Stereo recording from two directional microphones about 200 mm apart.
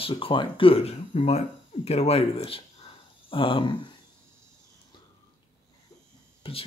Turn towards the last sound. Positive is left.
turn(degrees=30)  # may be behind; listen again after turning